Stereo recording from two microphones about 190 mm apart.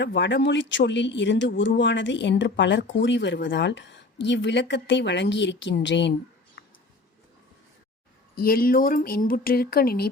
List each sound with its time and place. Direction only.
0.0 s speech: 65° left (ahead or behind)
8.4 s speech: 50° left (ahead or behind)